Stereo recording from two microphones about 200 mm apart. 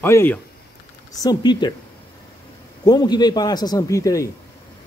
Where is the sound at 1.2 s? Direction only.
20° left (ahead or behind).